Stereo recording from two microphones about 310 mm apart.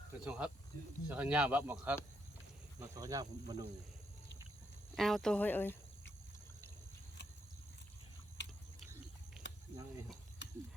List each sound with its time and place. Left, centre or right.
0.3 s speech: centre
4.9 s speech: centre
8.4 s pigeon: left
9.4 s cricket: centre
10.4 s ratchet: left